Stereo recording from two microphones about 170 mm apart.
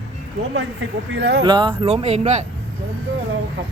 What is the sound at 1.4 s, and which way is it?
Speech, 30° right (ahead or behind).